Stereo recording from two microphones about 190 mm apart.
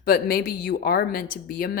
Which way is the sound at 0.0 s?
50° left (ahead or behind).